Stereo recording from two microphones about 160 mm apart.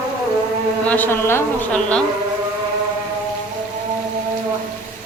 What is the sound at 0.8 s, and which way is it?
A woman's voice, 10° left (ahead or behind).